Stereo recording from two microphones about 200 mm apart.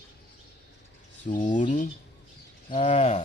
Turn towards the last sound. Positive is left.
turn(degrees=35)  # may be behind; listen again after turning